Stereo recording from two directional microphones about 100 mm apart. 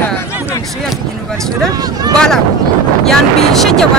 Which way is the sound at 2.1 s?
5° left (ahead or behind).